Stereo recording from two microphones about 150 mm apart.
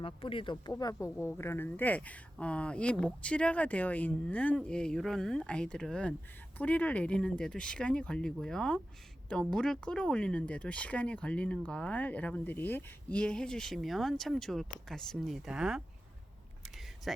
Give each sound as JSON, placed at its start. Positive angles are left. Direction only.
{"t": 0.0, "sound": "speech", "side_deg": 35}